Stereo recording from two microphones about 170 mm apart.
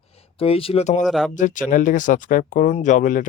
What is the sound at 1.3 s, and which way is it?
Speech, 50° left (ahead or behind).